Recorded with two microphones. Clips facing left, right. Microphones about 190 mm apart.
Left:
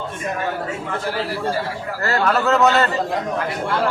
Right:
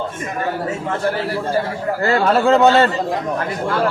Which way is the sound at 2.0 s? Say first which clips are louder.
Right 4 dB; 30° right (ahead or behind).